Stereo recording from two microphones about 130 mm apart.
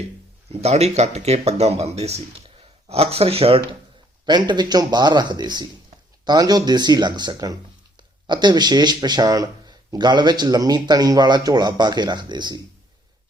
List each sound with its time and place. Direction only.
0.5 s speech: 55° right (ahead or behind)
4.3 s speech: 35° right (ahead or behind)